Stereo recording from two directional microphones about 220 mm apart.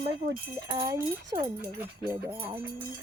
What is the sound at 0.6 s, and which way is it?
Speech, 15° right (ahead or behind).